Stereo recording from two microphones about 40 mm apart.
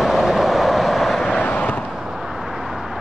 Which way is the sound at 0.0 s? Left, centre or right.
Centre.